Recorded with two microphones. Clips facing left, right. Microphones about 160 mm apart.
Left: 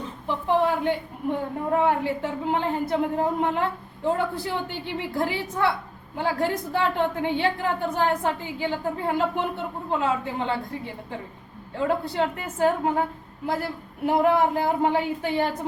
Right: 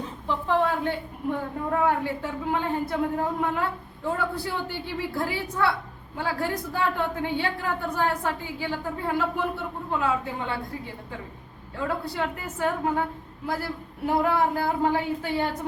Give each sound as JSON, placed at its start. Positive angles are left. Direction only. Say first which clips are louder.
{"t": 0.3, "sound": "a woman's voice", "louder": "left 2 dB", "side_deg": 15}
{"t": 11.8, "sound": "a woman's voice", "louder": "left 4 dB", "side_deg": 25}
{"t": 14.1, "sound": "a woman's voice", "louder": "left 3 dB", "side_deg": 20}